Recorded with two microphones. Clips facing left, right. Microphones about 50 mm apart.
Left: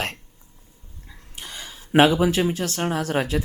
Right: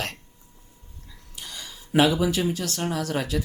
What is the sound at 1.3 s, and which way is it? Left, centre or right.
Speech, left.